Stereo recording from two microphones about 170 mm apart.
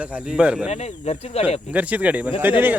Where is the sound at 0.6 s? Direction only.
40° left (ahead or behind).